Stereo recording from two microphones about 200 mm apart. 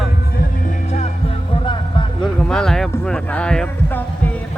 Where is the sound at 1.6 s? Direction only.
25° left (ahead or behind).